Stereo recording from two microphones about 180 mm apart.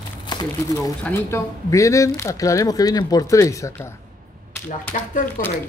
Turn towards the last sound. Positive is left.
turn(degrees=50)  # may be behind; listen again after turning